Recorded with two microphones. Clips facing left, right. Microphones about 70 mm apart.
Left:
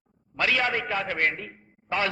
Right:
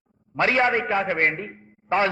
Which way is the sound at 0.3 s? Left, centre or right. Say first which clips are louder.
Right 5 dB; right.